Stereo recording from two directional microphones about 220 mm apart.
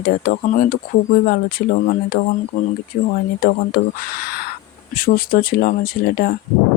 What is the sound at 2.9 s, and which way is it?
Speech, 40° left (ahead or behind).